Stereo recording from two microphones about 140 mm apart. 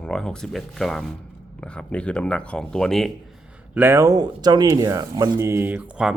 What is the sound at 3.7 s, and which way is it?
Speech, 15° right (ahead or behind).